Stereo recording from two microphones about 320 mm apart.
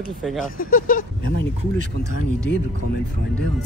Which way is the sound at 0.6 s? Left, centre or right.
Left.